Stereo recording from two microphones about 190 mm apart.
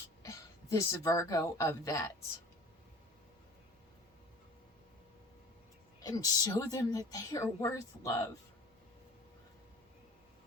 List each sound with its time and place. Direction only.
0.2 s a woman's voice: 15° left (ahead or behind)
6.0 s a woman's voice: 20° left (ahead or behind)